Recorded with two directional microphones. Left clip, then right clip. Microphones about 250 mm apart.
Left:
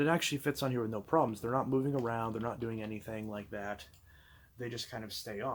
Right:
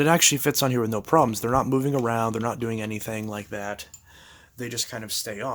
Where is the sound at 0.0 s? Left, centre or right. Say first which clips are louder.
Right 11 dB; right.